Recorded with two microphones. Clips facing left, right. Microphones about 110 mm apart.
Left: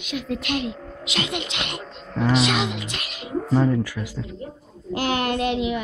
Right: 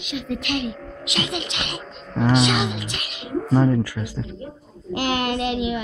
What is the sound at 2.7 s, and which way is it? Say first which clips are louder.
Speech: right 1 dB; 35° left (ahead or behind).